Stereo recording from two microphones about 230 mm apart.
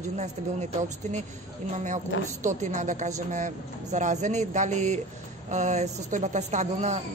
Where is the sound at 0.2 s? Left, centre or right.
Right.